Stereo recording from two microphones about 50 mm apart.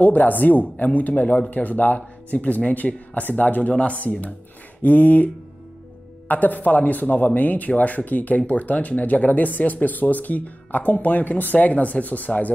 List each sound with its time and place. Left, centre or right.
0.0 s speech: left